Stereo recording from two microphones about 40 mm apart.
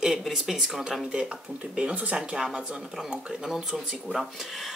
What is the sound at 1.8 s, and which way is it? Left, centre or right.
Speech, right.